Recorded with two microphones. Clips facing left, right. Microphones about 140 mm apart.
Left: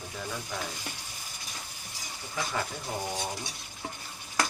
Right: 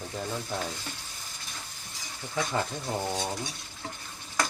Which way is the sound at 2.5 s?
20° right (ahead or behind).